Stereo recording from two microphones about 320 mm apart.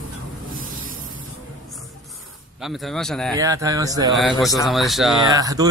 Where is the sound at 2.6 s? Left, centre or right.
Centre.